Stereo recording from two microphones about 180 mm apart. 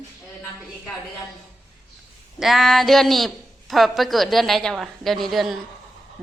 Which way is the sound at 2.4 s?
Centre (ahead or behind).